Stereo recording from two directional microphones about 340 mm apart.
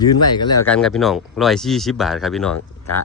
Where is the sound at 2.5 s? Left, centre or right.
Left.